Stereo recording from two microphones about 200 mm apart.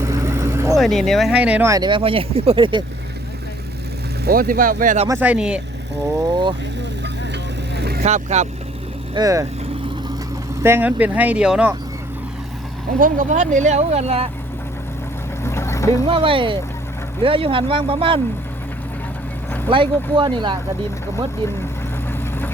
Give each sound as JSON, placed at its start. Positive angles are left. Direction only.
{"t": 0.0, "sound": "vehicle", "side_deg": -15}
{"t": 0.8, "sound": "speech", "side_deg": 0}
{"t": 4.3, "sound": "speech", "side_deg": -45}
{"t": 5.0, "sound": "speech", "side_deg": -10}
{"t": 6.1, "sound": "vehicle", "side_deg": -20}
{"t": 7.8, "sound": "vehicle", "side_deg": -50}
{"t": 8.0, "sound": "speech", "side_deg": -35}
{"t": 9.1, "sound": "speech", "side_deg": -15}
{"t": 10.6, "sound": "speech", "side_deg": -10}
{"t": 13.0, "sound": "speech", "side_deg": -40}
{"t": 15.4, "sound": "boat", "side_deg": 15}
{"t": 16.0, "sound": "speech", "side_deg": -25}
{"t": 19.7, "sound": "speech", "side_deg": -25}